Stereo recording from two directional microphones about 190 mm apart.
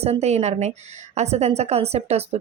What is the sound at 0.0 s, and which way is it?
A woman's voice, 35° right (ahead or behind).